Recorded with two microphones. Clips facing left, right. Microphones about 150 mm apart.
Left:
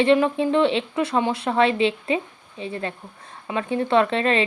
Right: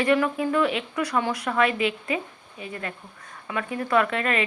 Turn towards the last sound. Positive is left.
turn(degrees=30)  # may be behind; listen again after turning